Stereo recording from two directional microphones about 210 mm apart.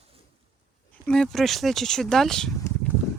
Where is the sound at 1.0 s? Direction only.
5° left (ahead or behind).